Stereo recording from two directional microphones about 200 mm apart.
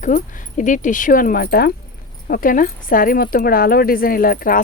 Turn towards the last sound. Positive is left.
turn(degrees=45)  # may be behind; listen again after turning